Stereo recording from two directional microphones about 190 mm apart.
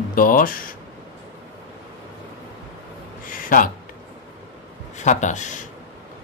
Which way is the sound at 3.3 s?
45° left (ahead or behind).